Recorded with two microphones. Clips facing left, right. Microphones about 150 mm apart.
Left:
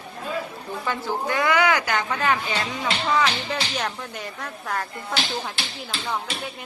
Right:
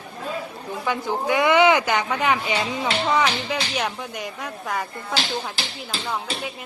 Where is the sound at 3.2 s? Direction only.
5° right (ahead or behind).